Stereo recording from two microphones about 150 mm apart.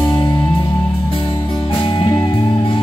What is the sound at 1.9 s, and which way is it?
Music, 35° left (ahead or behind).